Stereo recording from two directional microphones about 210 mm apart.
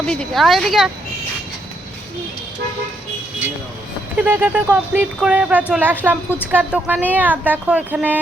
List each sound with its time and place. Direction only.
0.0 s a woman's voice: 5° left (ahead or behind)
4.2 s speech: 5° right (ahead or behind)